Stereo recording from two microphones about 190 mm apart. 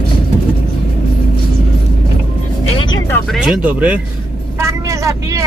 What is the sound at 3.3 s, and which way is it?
Speech, 5° right (ahead or behind).